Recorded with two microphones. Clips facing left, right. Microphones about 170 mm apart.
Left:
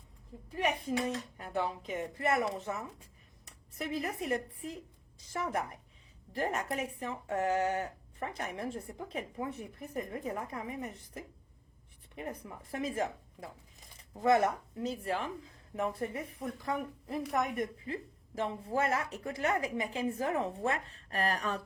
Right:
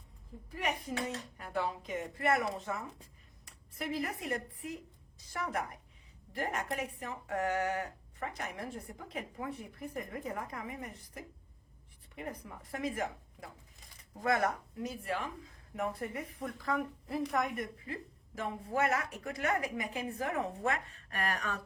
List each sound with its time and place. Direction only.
0.6 s a woman's voice: 25° left (ahead or behind)
4.2 s a woman's voice: 25° left (ahead or behind)